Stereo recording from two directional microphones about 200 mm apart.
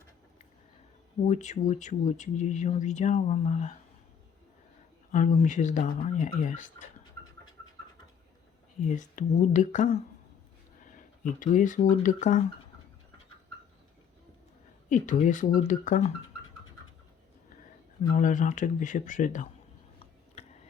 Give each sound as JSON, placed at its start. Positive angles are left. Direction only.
{"t": 1.3, "sound": "speech", "side_deg": 35}
{"t": 5.1, "sound": "speech", "side_deg": 40}
{"t": 8.8, "sound": "speech", "side_deg": 40}
{"t": 10.8, "sound": "a sound", "side_deg": 40}
{"t": 11.9, "sound": "speech", "side_deg": 40}
{"t": 14.8, "sound": "speech", "side_deg": 40}
{"t": 18.0, "sound": "speech", "side_deg": 45}